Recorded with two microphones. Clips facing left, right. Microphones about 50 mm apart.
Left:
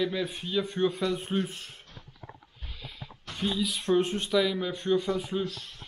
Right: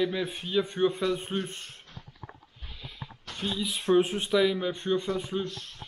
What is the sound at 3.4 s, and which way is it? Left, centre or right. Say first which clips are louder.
Speech: left 2 dB; centre.